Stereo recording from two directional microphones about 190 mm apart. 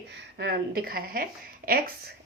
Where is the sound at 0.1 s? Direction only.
60° right (ahead or behind).